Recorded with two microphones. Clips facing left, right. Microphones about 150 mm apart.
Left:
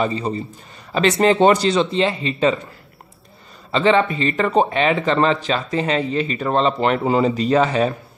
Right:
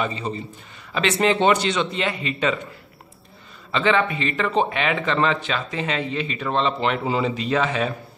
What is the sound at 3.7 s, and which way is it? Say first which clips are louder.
Speech: left 4 dB; 35° left (ahead or behind).